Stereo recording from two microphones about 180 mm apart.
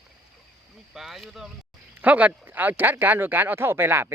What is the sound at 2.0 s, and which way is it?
Speech, 10° right (ahead or behind).